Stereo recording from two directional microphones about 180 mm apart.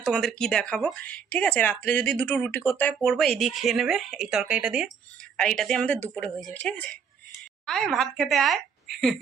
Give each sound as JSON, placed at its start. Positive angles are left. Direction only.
{"t": 0.0, "sound": "speech", "side_deg": 0}
{"t": 5.4, "sound": "a woman's voice", "side_deg": 5}